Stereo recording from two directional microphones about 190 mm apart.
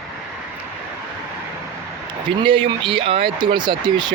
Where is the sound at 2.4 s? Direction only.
25° right (ahead or behind).